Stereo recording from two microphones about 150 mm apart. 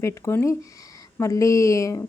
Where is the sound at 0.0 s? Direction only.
20° left (ahead or behind).